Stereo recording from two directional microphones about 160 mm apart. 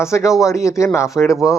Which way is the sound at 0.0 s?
20° left (ahead or behind).